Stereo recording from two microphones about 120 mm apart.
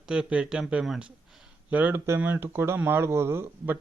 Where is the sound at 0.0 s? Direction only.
5° right (ahead or behind).